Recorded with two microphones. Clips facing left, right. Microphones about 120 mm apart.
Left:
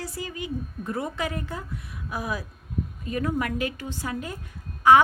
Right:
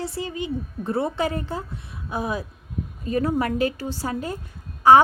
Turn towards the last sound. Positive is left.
turn(degrees=-30)  # may be behind; listen again after turning